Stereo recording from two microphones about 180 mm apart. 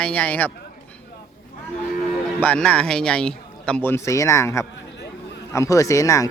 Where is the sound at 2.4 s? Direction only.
5° left (ahead or behind).